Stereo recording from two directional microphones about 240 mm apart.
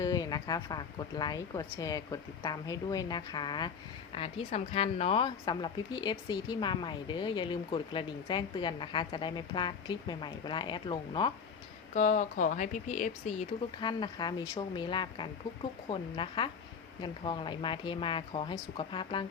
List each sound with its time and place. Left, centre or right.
0.0 s a woman's voice: centre
11.9 s a woman's voice: left
13.8 s a woman's voice: centre